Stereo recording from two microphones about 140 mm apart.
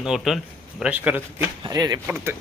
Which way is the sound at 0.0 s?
5° right (ahead or behind).